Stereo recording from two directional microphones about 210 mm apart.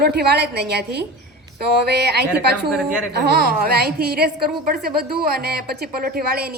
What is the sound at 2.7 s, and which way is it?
Speech, 5° right (ahead or behind).